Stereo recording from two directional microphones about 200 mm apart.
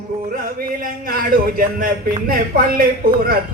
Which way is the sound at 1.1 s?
45° right (ahead or behind).